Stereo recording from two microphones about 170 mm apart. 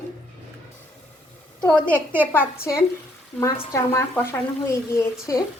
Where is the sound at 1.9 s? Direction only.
10° left (ahead or behind).